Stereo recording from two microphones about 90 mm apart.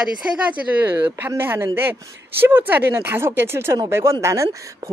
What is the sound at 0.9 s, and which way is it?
Speech, 20° right (ahead or behind).